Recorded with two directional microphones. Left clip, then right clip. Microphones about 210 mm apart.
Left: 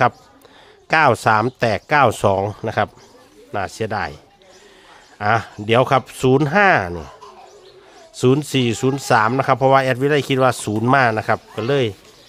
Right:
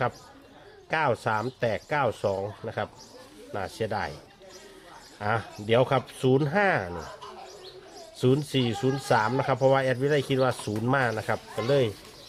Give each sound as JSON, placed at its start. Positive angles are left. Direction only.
{"t": 0.9, "sound": "speech", "side_deg": 45}
{"t": 5.1, "sound": "speech", "side_deg": 35}
{"t": 8.1, "sound": "speech", "side_deg": 40}